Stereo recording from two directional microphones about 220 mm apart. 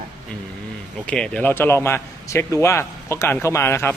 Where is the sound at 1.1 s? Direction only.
5° left (ahead or behind).